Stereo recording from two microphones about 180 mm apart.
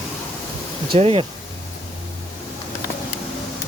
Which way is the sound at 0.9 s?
35° right (ahead or behind).